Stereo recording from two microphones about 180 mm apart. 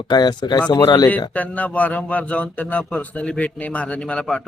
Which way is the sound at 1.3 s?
10° left (ahead or behind).